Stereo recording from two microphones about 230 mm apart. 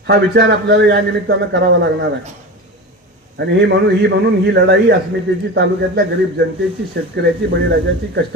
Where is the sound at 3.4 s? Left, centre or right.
Right.